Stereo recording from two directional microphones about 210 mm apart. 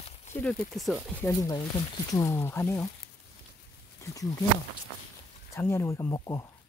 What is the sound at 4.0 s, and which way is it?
Speech, 15° left (ahead or behind).